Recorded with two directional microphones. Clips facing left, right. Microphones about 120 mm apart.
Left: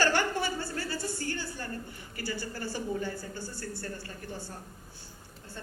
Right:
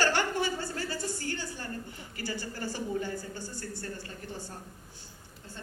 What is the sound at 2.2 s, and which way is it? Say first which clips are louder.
A woman's voice: even; 20° right (ahead or behind).